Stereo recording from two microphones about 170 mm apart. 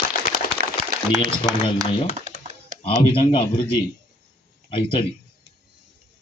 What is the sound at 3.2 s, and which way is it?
Speech, 30° left (ahead or behind).